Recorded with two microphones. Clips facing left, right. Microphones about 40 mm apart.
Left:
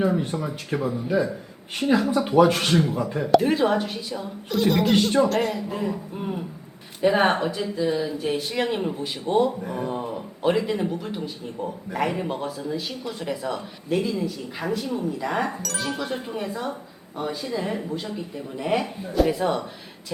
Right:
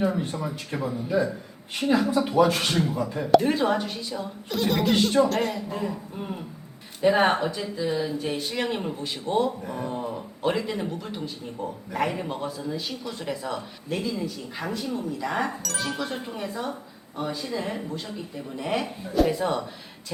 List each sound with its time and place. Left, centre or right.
0.0 s speech: centre
2.3 s speech: centre